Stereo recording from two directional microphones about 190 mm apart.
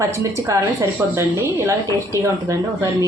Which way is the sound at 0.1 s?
15° right (ahead or behind).